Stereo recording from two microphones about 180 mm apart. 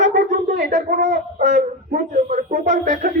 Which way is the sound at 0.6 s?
45° right (ahead or behind).